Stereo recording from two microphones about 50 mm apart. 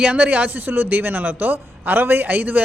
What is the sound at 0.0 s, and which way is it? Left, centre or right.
Speech, right.